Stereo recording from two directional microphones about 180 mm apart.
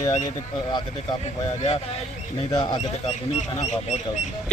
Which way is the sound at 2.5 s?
20° left (ahead or behind).